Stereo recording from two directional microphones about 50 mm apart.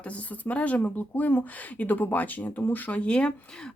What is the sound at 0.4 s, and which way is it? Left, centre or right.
Speech, left.